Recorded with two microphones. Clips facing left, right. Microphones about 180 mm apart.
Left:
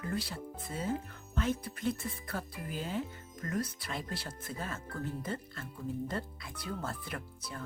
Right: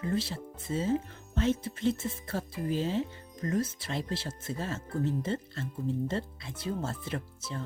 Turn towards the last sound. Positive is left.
turn(degrees=-25)  # may be behind; listen again after turning